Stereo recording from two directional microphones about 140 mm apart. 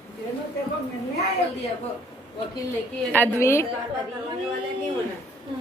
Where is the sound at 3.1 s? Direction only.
15° left (ahead or behind).